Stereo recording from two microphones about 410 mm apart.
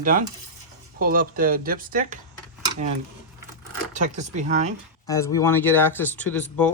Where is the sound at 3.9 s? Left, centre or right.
Centre.